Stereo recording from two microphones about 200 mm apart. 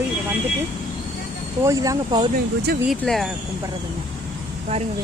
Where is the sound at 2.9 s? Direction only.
Centre (ahead or behind).